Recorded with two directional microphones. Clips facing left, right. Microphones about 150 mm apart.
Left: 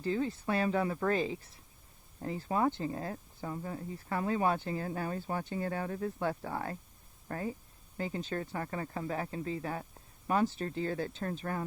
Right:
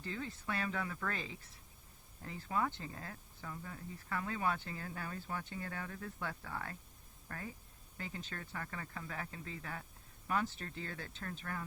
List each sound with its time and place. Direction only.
0.0 s speech: 30° left (ahead or behind)